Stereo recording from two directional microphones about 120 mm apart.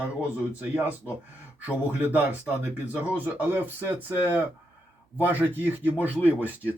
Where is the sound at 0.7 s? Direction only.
15° right (ahead or behind).